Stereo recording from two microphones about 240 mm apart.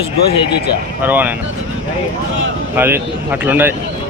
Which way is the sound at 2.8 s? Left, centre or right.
Centre.